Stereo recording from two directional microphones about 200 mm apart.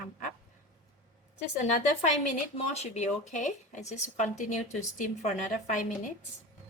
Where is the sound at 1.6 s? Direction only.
35° left (ahead or behind).